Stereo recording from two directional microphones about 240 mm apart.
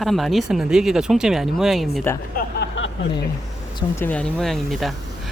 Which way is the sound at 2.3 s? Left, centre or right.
Left.